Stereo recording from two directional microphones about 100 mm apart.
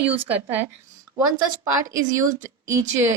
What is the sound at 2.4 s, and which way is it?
Speech, 30° right (ahead or behind).